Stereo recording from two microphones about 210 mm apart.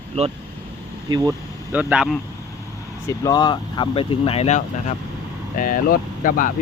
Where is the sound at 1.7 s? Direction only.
5° right (ahead or behind).